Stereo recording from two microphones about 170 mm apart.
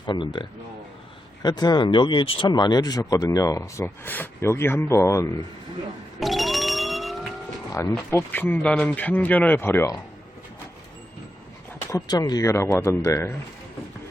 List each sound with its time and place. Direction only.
0.0 s speech: 25° left (ahead or behind)
6.1 s a sound: centre (ahead or behind)
7.7 s speech: 20° left (ahead or behind)
11.9 s speech: 20° left (ahead or behind)